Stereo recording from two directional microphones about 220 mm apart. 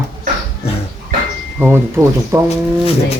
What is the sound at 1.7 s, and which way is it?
Speech, 10° right (ahead or behind).